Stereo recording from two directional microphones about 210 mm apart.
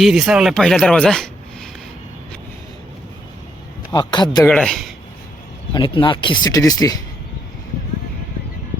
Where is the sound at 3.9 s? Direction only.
20° left (ahead or behind).